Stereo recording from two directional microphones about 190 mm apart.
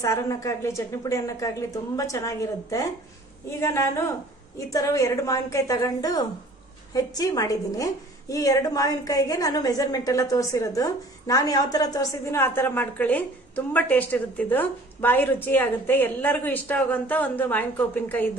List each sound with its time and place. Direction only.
0.0 s a woman's voice: 15° left (ahead or behind)